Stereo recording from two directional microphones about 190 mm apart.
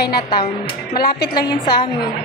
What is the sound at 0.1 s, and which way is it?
A woman's voice, 25° left (ahead or behind).